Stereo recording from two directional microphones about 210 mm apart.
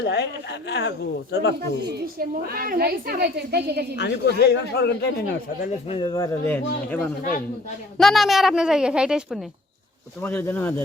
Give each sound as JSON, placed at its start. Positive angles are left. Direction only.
{"t": 0.0, "sound": "speech", "side_deg": 55}
{"t": 1.9, "sound": "a woman's voice", "side_deg": -45}
{"t": 3.9, "sound": "speech", "side_deg": 55}
{"t": 5.6, "sound": "a woman's voice", "side_deg": 25}
{"t": 10.2, "sound": "speech", "side_deg": 10}